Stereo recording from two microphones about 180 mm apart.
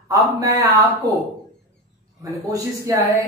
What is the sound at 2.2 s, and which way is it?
Speech, 20° right (ahead or behind).